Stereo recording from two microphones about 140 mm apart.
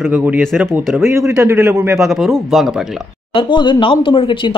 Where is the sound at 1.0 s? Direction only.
20° right (ahead or behind).